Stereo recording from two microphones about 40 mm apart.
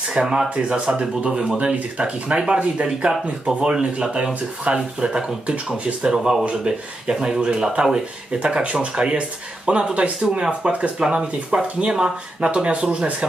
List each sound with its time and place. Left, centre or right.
0.1 s speech: centre
3.1 s speech: centre